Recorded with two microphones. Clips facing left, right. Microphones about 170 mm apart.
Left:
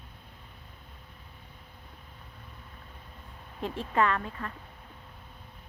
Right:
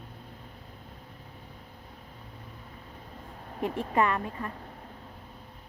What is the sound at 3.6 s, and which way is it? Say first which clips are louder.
Speech: right 4 dB; 55° right (ahead or behind).